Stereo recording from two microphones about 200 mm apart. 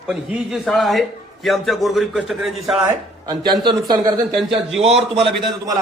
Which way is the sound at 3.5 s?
20° right (ahead or behind).